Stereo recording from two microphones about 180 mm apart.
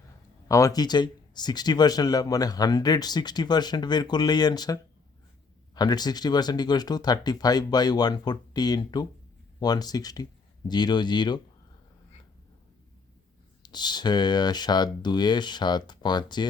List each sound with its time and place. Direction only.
0.4 s speech: 20° left (ahead or behind)
13.6 s speech: 25° left (ahead or behind)